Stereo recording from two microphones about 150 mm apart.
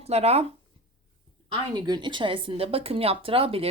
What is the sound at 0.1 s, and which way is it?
Speech, 45° right (ahead or behind).